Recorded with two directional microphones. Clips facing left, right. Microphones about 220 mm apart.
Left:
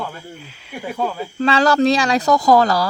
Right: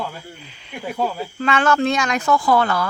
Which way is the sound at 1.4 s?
35° left (ahead or behind).